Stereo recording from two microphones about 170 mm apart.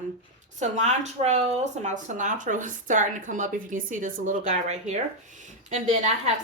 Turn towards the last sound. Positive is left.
turn(degrees=-45)  # may be behind; listen again after turning